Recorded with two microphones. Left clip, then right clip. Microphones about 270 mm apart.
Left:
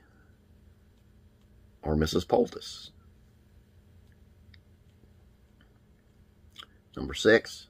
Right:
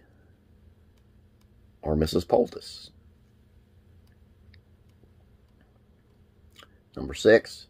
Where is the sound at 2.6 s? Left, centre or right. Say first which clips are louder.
Even; right.